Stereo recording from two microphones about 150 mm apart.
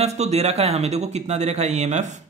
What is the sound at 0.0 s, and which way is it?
A man's voice, 45° right (ahead or behind).